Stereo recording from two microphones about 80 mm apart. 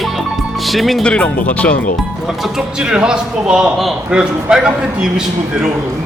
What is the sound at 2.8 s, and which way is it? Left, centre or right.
A man's voice, centre.